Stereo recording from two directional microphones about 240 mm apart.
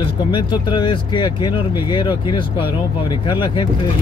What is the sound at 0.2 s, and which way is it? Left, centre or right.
Speech, centre.